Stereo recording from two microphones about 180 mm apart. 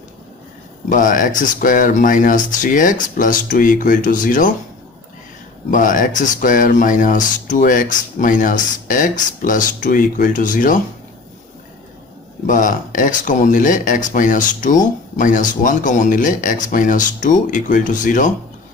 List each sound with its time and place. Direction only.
0.8 s speech: 45° left (ahead or behind)
5.7 s speech: 50° left (ahead or behind)
12.4 s speech: 45° left (ahead or behind)